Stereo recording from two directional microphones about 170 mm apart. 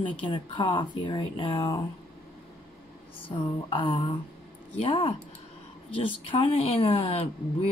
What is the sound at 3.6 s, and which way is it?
Speech, 30° left (ahead or behind).